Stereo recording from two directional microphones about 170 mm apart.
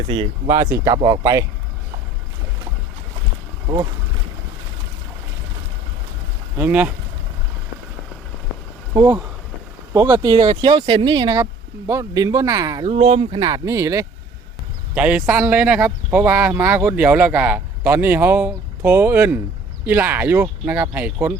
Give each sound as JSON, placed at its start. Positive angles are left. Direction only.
{"t": 0.1, "sound": "speech", "side_deg": -40}
{"t": 0.9, "sound": "speech", "side_deg": -20}
{"t": 6.6, "sound": "speech", "side_deg": -10}
{"t": 9.9, "sound": "speech", "side_deg": -15}
{"t": 10.2, "sound": "speech", "side_deg": -30}
{"t": 12.8, "sound": "speech", "side_deg": -40}
{"t": 13.4, "sound": "speech", "side_deg": -20}
{"t": 14.9, "sound": "speech", "side_deg": -5}